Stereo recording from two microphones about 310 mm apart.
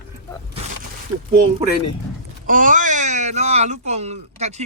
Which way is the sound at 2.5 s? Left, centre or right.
Right.